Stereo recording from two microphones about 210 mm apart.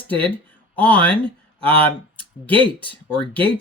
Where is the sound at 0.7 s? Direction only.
5° left (ahead or behind).